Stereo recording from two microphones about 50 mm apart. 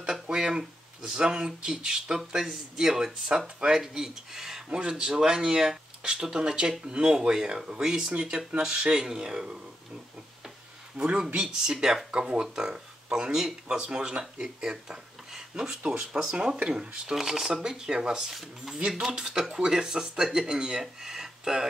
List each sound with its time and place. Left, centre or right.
0.0 s speech: centre
4.6 s speech: centre
11.0 s speech: centre
18.3 s speech: centre
18.8 s speech: centre